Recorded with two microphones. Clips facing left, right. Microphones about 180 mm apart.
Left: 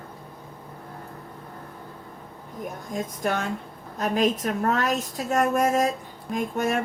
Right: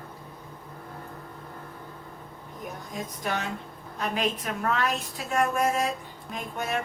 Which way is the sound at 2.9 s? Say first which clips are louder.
Left 5 dB; 50° left (ahead or behind).